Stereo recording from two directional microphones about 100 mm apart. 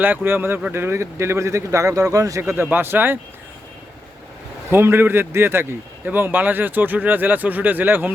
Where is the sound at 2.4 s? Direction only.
20° right (ahead or behind).